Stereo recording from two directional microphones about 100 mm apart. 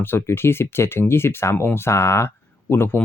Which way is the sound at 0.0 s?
25° left (ahead or behind).